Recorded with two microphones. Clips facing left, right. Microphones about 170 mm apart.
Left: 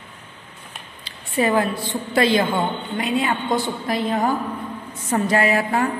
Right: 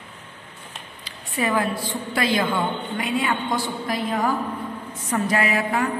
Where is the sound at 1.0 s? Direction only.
30° left (ahead or behind).